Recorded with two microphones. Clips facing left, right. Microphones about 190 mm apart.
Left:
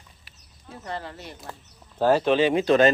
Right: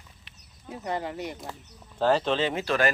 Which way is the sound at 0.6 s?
15° right (ahead or behind).